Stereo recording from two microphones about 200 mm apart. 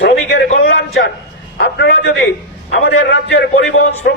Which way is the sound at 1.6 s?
55° left (ahead or behind).